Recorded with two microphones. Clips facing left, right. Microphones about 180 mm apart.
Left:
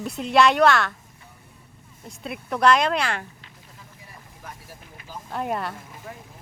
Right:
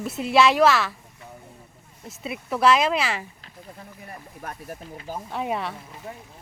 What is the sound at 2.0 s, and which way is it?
Speech, 5° right (ahead or behind).